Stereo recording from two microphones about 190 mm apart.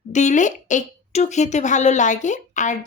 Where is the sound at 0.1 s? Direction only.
40° left (ahead or behind).